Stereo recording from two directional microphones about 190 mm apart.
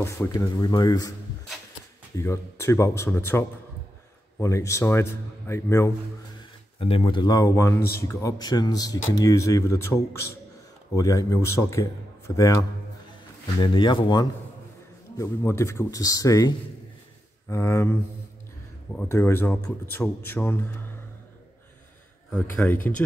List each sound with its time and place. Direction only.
0.0 s speech: 15° left (ahead or behind)
2.1 s a man's voice: 15° left (ahead or behind)
6.8 s a man's voice: 30° left (ahead or behind)
11.0 s a man's voice: 15° left (ahead or behind)
18.9 s a man's voice: 10° left (ahead or behind)
22.3 s a man's voice: 10° left (ahead or behind)